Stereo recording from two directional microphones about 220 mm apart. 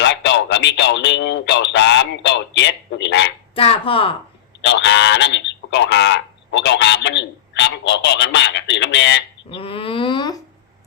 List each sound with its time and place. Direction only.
0.0 s a sound: 55° left (ahead or behind)
3.5 s speech: 25° left (ahead or behind)
4.6 s speech: 55° left (ahead or behind)
9.5 s speech: 25° left (ahead or behind)